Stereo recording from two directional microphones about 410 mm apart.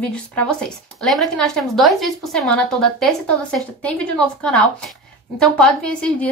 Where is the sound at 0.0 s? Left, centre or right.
Centre.